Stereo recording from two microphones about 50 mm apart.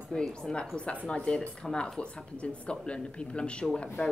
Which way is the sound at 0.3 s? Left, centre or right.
Centre.